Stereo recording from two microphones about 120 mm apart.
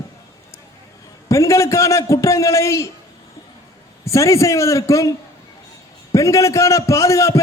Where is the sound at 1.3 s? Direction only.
25° left (ahead or behind).